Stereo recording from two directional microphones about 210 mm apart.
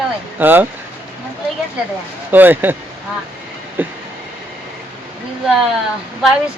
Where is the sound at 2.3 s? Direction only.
10° right (ahead or behind).